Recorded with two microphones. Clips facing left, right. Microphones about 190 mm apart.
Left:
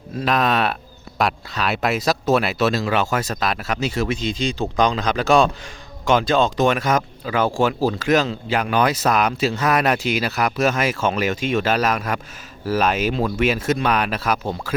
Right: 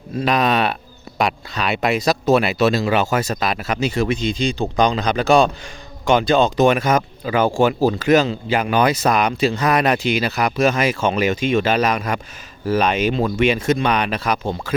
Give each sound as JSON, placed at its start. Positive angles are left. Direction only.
{"t": 0.2, "sound": "speech", "side_deg": 0}